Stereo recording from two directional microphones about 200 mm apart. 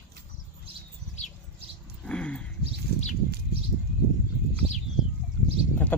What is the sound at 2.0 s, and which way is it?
Dog, 5° left (ahead or behind).